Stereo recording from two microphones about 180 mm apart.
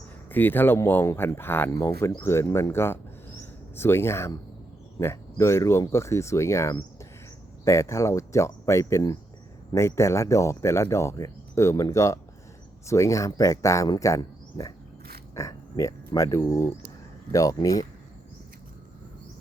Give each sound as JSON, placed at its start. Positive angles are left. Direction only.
{"t": 0.3, "sound": "speech", "side_deg": 10}